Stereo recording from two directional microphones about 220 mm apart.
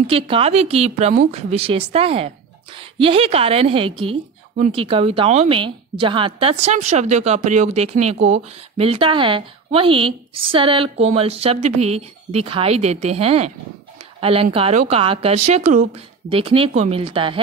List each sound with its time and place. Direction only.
0.0 s speech: 25° right (ahead or behind)